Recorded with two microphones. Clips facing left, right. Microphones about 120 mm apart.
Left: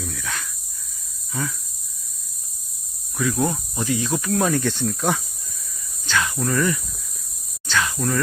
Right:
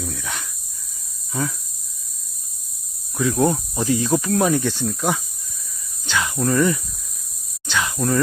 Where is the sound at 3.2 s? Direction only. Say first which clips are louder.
Right 4 dB; 25° right (ahead or behind).